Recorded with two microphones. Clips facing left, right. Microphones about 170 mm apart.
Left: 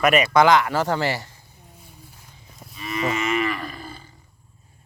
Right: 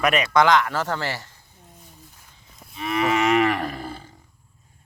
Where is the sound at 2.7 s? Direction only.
70° right (ahead or behind).